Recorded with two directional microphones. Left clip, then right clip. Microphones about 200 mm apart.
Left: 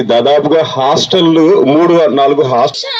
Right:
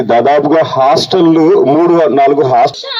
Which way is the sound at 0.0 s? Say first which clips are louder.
Even; 15° right (ahead or behind).